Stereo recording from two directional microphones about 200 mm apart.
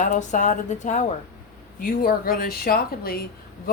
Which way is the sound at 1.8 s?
45° left (ahead or behind).